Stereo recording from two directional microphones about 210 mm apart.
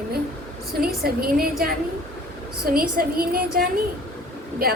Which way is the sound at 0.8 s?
45° right (ahead or behind).